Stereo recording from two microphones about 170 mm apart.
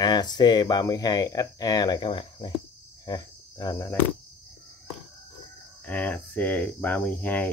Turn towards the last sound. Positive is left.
turn(degrees=10)  # may be behind; listen again after turning